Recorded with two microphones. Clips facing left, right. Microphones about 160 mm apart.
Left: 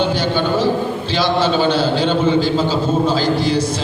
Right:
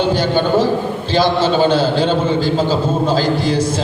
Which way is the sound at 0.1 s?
45° right (ahead or behind).